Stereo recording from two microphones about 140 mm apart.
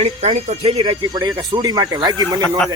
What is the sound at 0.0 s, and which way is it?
Speech, 50° right (ahead or behind).